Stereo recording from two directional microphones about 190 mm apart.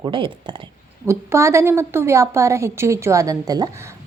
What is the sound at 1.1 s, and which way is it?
A woman's voice, 15° right (ahead or behind).